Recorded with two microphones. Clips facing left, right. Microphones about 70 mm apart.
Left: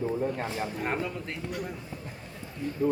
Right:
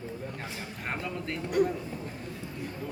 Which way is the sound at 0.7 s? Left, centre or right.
Centre.